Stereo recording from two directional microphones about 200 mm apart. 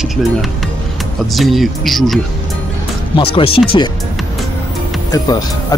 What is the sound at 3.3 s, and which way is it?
Speech, 25° left (ahead or behind).